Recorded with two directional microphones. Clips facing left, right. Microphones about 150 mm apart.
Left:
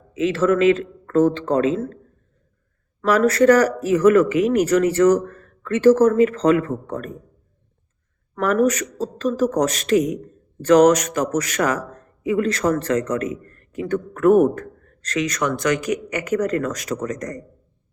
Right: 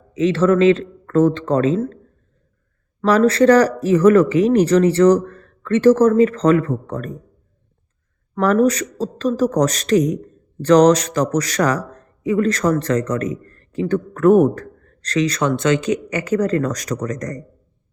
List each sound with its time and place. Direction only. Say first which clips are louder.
0.1 s speech: right 3 dB; 35° right (ahead or behind)
3.1 s speech: right 2 dB; 30° right (ahead or behind)
8.4 s a man's voice: right 3 dB; 35° right (ahead or behind)
13.4 s a sound: right 5 dB; 35° right (ahead or behind)
14.2 s speech: right 2 dB; 35° right (ahead or behind)